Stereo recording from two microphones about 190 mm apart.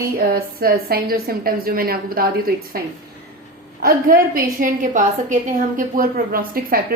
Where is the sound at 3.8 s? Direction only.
50° right (ahead or behind).